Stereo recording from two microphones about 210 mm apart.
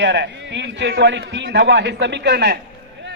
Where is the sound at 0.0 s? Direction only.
55° right (ahead or behind).